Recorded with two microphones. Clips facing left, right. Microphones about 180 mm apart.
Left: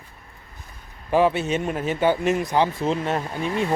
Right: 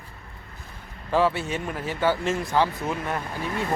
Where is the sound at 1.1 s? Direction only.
20° left (ahead or behind).